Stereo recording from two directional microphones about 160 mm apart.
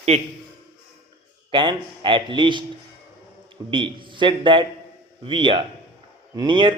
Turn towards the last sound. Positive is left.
turn(degrees=-30)  # may be behind; listen again after turning